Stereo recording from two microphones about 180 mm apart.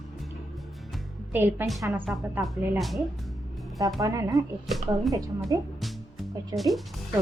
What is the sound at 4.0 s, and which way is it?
A woman's voice, 20° right (ahead or behind).